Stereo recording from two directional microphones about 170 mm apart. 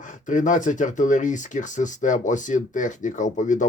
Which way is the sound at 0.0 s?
50° left (ahead or behind).